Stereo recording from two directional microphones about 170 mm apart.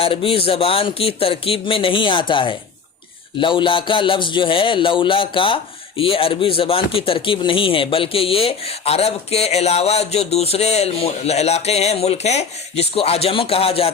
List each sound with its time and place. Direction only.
0.0 s speech: 35° left (ahead or behind)